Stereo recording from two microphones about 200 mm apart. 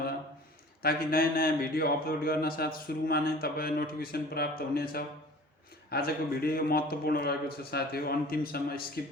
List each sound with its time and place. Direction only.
0.8 s speech: 50° left (ahead or behind)